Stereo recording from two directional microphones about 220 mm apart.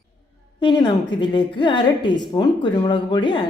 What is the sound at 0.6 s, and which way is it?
A woman's voice, 20° left (ahead or behind).